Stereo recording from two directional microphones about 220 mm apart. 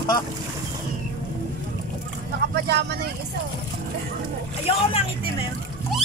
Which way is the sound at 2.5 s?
50° right (ahead or behind).